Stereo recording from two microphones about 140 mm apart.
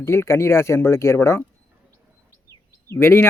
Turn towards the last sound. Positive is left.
turn(degrees=15)  # may be behind; listen again after turning